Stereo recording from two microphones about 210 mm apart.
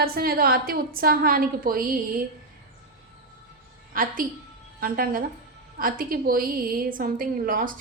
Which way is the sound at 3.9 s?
40° right (ahead or behind).